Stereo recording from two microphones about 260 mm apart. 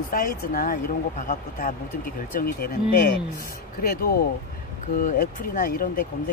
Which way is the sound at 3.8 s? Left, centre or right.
Left.